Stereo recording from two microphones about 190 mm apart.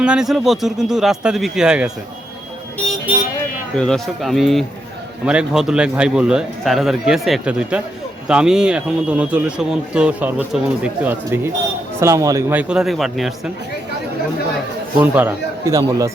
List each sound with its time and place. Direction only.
0.0 s speech: 5° right (ahead or behind)
3.8 s a man's voice: 5° left (ahead or behind)
15.0 s a man's voice: 10° right (ahead or behind)